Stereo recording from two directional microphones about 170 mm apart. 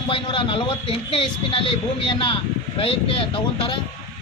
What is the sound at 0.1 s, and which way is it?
A man's voice, 30° left (ahead or behind).